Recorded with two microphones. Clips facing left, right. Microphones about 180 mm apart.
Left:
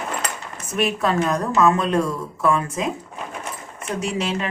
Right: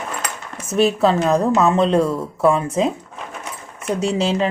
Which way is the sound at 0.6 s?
30° right (ahead or behind).